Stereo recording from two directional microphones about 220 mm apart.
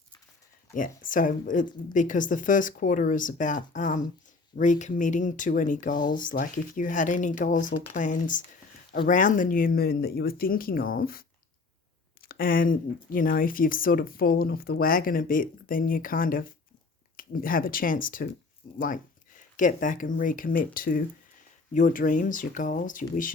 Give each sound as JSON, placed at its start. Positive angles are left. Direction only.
{"t": 0.7, "sound": "speech", "side_deg": 35}